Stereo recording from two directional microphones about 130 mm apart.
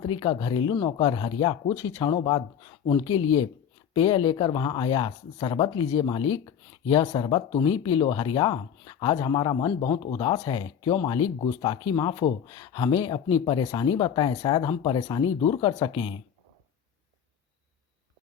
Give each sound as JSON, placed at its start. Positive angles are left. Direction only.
{"t": 0.2, "sound": "speech", "side_deg": 40}
{"t": 2.1, "sound": "speech", "side_deg": 40}